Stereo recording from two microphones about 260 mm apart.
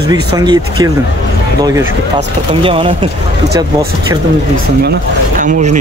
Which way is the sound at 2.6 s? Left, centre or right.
Centre.